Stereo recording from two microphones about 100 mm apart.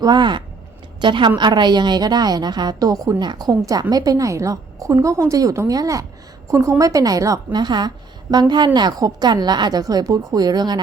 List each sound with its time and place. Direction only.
0.0 s a woman's voice: 45° right (ahead or behind)